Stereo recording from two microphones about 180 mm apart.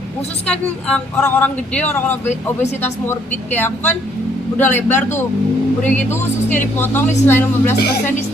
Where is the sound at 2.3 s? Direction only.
40° left (ahead or behind).